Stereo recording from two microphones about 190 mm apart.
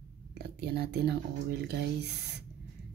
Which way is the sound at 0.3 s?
60° right (ahead or behind).